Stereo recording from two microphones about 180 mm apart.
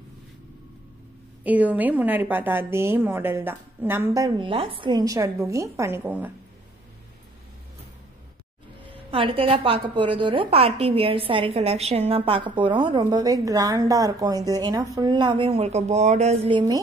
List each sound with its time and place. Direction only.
1.4 s a woman's voice: 10° right (ahead or behind)
9.1 s a woman's voice: 30° right (ahead or behind)